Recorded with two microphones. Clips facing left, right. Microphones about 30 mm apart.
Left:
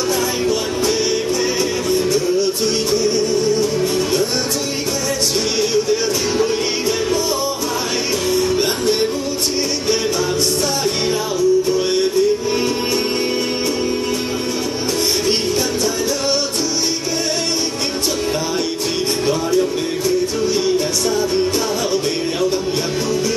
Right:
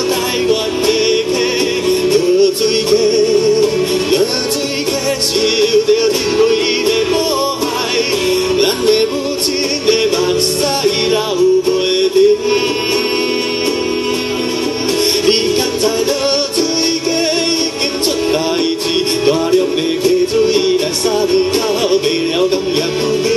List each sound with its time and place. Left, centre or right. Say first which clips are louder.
1.9 s music: right 6 dB; right
5.6 s music: right 7 dB; right
8.3 s music: right 2 dB; right
10.8 s music: right 5 dB; right
20.4 s music: right 4 dB; right